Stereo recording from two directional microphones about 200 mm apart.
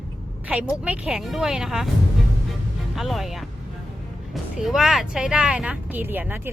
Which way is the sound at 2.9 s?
Centre (ahead or behind).